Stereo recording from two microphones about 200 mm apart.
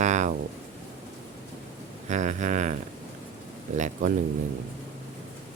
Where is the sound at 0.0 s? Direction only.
35° right (ahead or behind).